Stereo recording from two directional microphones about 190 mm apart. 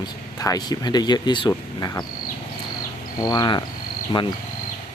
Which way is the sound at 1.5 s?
20° left (ahead or behind).